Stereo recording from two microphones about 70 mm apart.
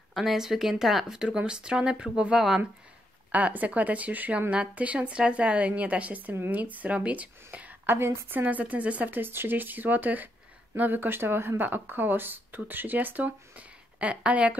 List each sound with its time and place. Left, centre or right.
0.1 s a woman's voice: centre